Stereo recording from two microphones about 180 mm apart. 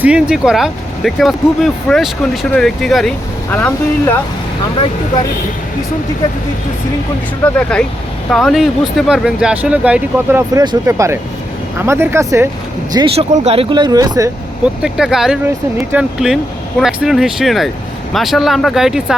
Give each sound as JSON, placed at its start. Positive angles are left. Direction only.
{"t": 0.0, "sound": "speech", "side_deg": -5}
{"t": 7.4, "sound": "speech", "side_deg": 5}
{"t": 10.5, "sound": "speech", "side_deg": -20}
{"t": 13.1, "sound": "speech", "side_deg": -35}
{"t": 14.8, "sound": "speech", "side_deg": -5}